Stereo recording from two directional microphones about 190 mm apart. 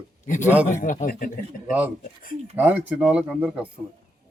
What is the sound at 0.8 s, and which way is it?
Speech, 45° left (ahead or behind).